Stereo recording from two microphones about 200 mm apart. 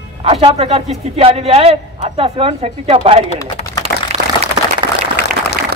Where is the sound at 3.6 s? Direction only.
35° left (ahead or behind).